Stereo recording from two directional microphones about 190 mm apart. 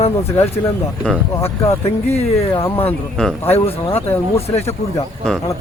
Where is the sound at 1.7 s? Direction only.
30° left (ahead or behind).